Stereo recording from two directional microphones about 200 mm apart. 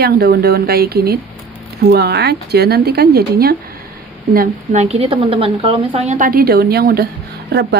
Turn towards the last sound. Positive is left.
turn(degrees=-55)  # may be behind; listen again after turning